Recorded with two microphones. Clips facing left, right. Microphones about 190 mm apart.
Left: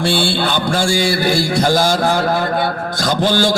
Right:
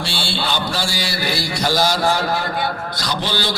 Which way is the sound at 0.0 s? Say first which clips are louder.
Left 8 dB; 50° left (ahead or behind).